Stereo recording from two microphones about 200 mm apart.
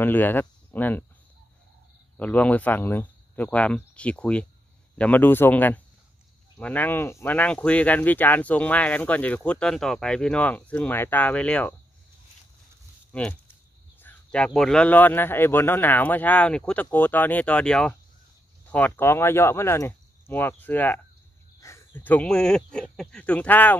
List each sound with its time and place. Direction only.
0.0 s speech: 10° left (ahead or behind)
2.1 s speech: 5° left (ahead or behind)
13.1 s speech: 5° left (ahead or behind)